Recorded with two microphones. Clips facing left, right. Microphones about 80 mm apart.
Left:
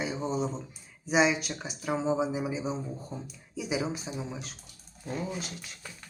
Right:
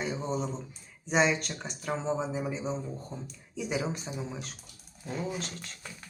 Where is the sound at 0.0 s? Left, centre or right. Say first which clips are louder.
Left 2 dB; centre.